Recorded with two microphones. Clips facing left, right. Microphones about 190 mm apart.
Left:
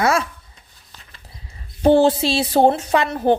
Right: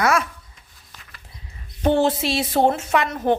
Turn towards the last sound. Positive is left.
turn(degrees=30)  # may be behind; listen again after turning